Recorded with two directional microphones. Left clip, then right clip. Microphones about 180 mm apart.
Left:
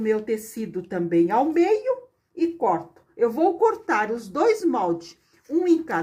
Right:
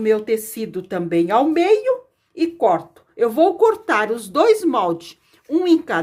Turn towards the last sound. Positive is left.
turn(degrees=-35)  # may be behind; listen again after turning